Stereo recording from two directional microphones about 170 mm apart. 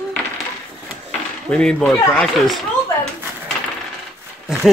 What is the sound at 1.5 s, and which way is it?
Speech, 5° left (ahead or behind).